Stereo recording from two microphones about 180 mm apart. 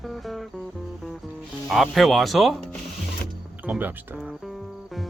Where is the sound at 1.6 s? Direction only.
Centre (ahead or behind).